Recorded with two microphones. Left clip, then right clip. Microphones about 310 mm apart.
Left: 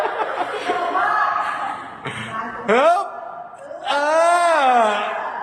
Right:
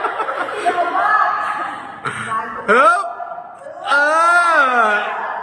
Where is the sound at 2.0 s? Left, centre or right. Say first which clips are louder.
Right 5 dB; centre.